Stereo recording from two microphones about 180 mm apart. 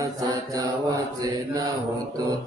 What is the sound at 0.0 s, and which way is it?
Mantra, 20° right (ahead or behind).